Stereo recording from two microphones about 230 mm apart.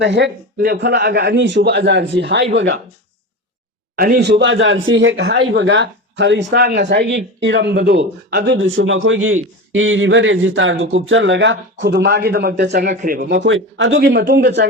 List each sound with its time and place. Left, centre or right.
0.0 s a man's voice: right
3.9 s a man's voice: right